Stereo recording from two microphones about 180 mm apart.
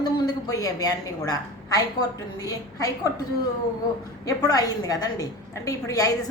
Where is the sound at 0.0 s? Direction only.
25° left (ahead or behind).